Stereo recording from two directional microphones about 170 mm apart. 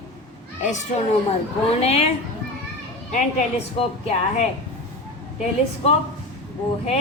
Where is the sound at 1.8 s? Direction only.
40° left (ahead or behind).